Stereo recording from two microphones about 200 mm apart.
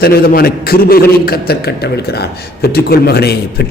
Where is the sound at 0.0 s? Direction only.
50° left (ahead or behind).